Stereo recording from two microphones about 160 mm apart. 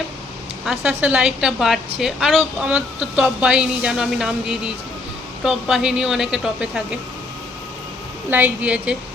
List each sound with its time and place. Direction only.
0.6 s speech: 5° right (ahead or behind)
8.3 s a woman's voice: 10° right (ahead or behind)